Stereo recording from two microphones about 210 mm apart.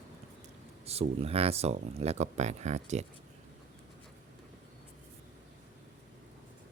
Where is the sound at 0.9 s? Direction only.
30° right (ahead or behind).